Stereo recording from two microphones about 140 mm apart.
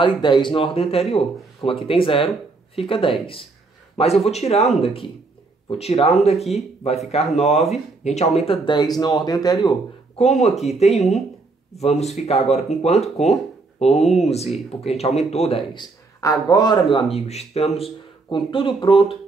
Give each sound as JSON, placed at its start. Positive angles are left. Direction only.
{"t": 0.0, "sound": "speech", "side_deg": 35}
{"t": 6.3, "sound": "speech", "side_deg": 0}
{"t": 7.1, "sound": "speech", "side_deg": 50}
{"t": 10.1, "sound": "speech", "side_deg": 55}
{"t": 15.7, "sound": "speech", "side_deg": 30}
{"t": 16.9, "sound": "speech", "side_deg": 45}